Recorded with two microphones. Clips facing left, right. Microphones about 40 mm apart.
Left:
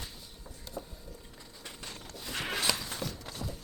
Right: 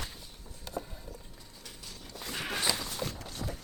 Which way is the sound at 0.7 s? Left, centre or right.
Right.